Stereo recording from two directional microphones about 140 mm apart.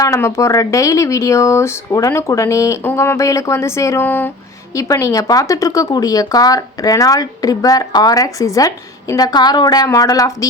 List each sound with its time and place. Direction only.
0.0 s speech: 20° left (ahead or behind)